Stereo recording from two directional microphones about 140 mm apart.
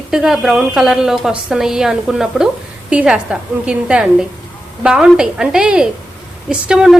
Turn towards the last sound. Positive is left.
turn(degrees=-5)  # may be behind; listen again after turning